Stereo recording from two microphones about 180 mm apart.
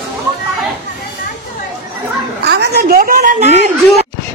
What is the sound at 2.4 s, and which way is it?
A woman's voice, 65° right (ahead or behind).